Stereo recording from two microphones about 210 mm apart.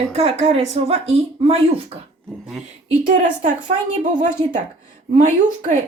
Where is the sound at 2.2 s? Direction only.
Centre (ahead or behind).